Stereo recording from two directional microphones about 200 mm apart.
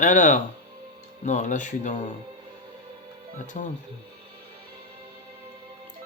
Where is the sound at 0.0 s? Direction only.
40° left (ahead or behind).